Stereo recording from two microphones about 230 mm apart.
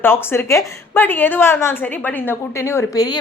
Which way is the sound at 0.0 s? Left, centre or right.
Centre.